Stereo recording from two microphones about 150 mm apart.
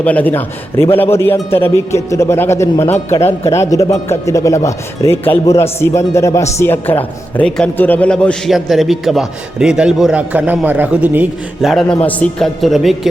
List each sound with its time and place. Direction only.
0.0 s a man's voice: 10° left (ahead or behind); by 11.7 s 10° right (ahead or behind)
11.7 s speech: centre (ahead or behind)